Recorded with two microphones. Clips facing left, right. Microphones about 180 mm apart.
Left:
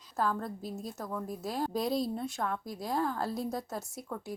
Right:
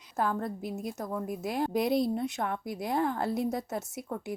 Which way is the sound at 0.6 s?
15° right (ahead or behind).